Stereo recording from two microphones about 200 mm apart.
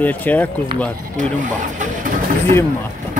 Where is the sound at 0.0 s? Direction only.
10° left (ahead or behind).